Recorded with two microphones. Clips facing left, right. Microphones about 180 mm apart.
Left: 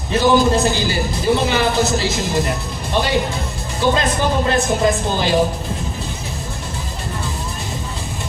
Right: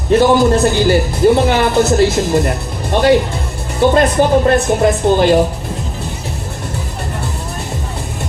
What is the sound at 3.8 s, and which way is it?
Speech, 55° right (ahead or behind).